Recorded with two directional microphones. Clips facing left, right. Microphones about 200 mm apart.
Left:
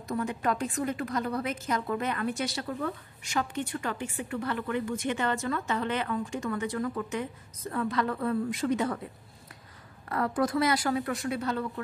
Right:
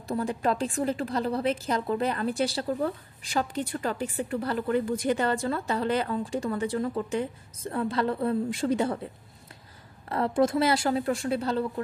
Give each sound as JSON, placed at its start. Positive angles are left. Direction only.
{"t": 0.1, "sound": "a woman's voice", "side_deg": -30}
{"t": 10.0, "sound": "a woman's voice", "side_deg": -25}